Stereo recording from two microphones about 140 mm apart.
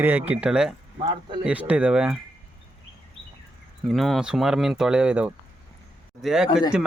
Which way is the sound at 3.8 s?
Centre (ahead or behind).